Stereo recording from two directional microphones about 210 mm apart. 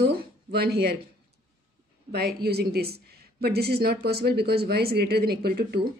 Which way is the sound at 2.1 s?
50° right (ahead or behind).